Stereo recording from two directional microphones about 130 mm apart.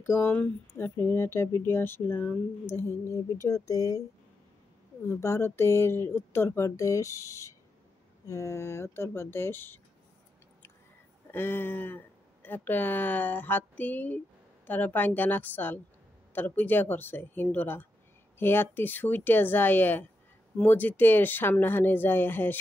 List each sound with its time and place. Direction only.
0.0 s speech: 15° left (ahead or behind)
5.0 s speech: 20° left (ahead or behind)
11.3 s speech: 15° left (ahead or behind)